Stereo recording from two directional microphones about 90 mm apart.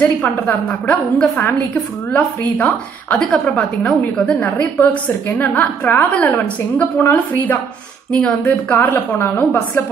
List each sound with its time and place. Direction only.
0.0 s a woman's voice: 15° left (ahead or behind)
2.5 s a woman's voice: 10° left (ahead or behind)
8.5 s a woman's voice: 20° left (ahead or behind)